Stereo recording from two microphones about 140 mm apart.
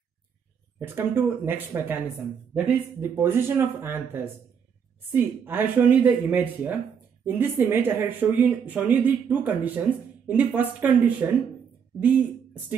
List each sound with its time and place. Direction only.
0.7 s speech: 15° right (ahead or behind)